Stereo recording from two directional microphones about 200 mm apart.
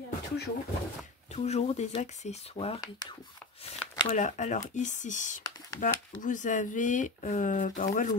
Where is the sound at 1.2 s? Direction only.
35° left (ahead or behind).